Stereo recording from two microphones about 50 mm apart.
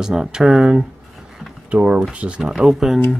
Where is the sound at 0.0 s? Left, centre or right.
Centre.